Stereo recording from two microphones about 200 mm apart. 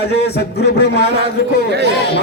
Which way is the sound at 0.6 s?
55° left (ahead or behind).